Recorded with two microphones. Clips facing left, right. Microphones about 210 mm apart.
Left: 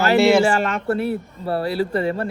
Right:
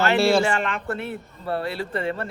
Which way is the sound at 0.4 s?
40° left (ahead or behind).